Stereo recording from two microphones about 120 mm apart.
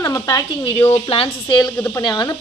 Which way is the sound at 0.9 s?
50° left (ahead or behind).